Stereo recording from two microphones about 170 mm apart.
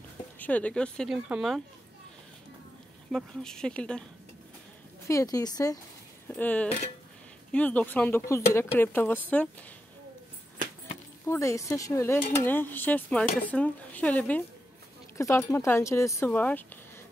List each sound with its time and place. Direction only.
0.4 s speech: 10° left (ahead or behind)
3.1 s speech: centre (ahead or behind)
5.0 s a woman's voice: 20° left (ahead or behind)
6.2 s speech: 10° left (ahead or behind)
11.2 s speech: 15° left (ahead or behind)